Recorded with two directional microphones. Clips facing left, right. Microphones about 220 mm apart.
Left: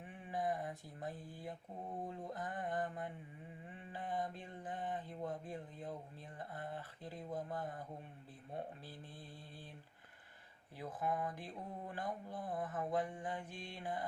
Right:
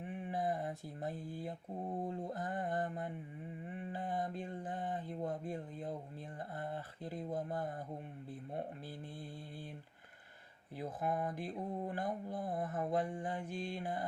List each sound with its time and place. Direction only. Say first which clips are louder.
0.0 s mantra: right 3 dB; 30° right (ahead or behind)
7.3 s mantra: right 3 dB; 25° right (ahead or behind)
10.8 s mantra: right 2 dB; 25° right (ahead or behind)